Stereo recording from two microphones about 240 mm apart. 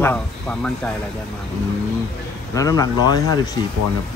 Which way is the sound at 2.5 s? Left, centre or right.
Centre.